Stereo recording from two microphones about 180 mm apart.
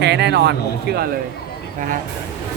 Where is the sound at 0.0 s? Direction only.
70° right (ahead or behind).